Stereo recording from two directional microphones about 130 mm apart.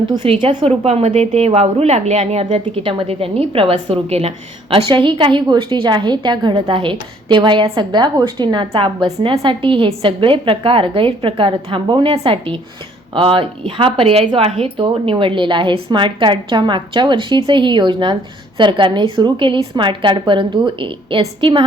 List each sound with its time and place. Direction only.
0.1 s a woman's voice: 40° right (ahead or behind)